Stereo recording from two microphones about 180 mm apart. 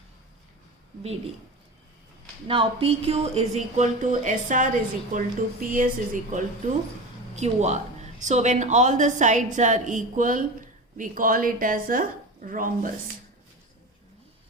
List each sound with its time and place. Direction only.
2.5 s speech: 30° right (ahead or behind); by 12.9 s 50° right (ahead or behind)